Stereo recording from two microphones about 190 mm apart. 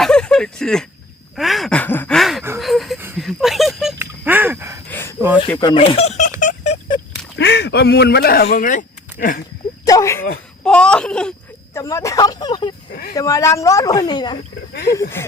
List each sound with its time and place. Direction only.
0.0 s a sound: 5° left (ahead or behind)
3.2 s speech: centre (ahead or behind)
3.9 s a sound: 10° right (ahead or behind)
4.9 s a sound: 10° left (ahead or behind)
5.5 s speech: 25° left (ahead or behind)
6.4 s a sound: 40° left (ahead or behind)
7.3 s speech: 65° left (ahead or behind); by 9.4 s 45° left (ahead or behind)
9.8 s speech: 15° left (ahead or behind)
10.6 s speech: 5° left (ahead or behind)
11.8 s speech: 15° left (ahead or behind)
12.9 s speech: 55° left (ahead or behind)
13.1 s a woman's voice: 15° left (ahead or behind)
14.7 s speech: 60° left (ahead or behind)